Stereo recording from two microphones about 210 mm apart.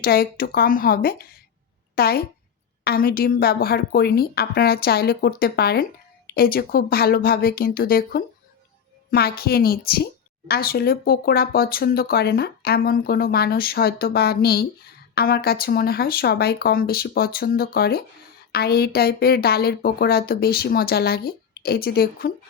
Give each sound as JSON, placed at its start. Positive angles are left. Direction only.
{"t": 0.0, "sound": "a woman's voice", "side_deg": 45}